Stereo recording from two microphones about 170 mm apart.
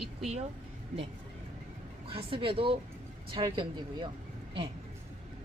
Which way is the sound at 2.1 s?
30° right (ahead or behind).